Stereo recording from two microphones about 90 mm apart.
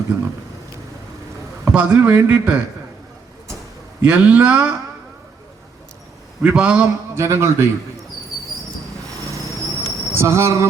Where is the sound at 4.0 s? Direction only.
10° right (ahead or behind).